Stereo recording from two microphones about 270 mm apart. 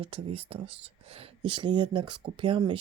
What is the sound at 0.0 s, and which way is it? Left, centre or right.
Speech, right.